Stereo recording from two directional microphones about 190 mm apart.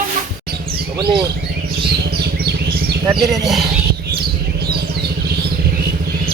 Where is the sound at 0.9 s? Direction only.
20° right (ahead or behind).